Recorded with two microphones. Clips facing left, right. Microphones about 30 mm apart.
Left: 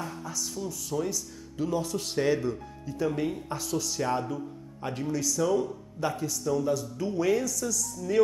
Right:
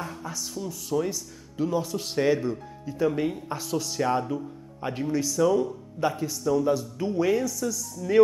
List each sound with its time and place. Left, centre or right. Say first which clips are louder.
0.2 s speech: right 1 dB; centre